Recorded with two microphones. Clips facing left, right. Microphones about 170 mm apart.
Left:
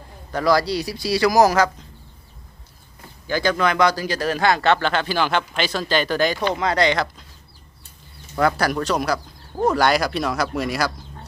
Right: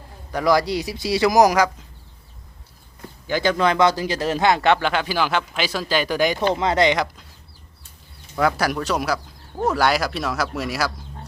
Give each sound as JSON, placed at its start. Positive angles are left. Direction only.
{"t": 0.3, "sound": "speech", "side_deg": -20}
{"t": 3.2, "sound": "a man's voice", "side_deg": -20}
{"t": 8.4, "sound": "a man's voice", "side_deg": -5}